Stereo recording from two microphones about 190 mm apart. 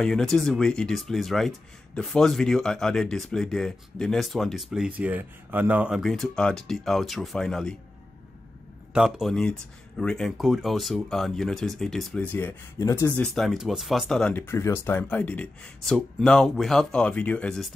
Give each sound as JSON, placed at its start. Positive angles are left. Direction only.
{"t": 0.0, "sound": "speech", "side_deg": 0}
{"t": 8.9, "sound": "speech", "side_deg": 0}